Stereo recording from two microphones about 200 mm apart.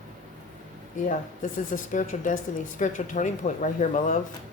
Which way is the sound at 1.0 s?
40° left (ahead or behind).